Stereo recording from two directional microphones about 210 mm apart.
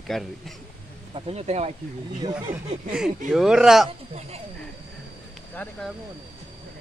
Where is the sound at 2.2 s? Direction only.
20° right (ahead or behind).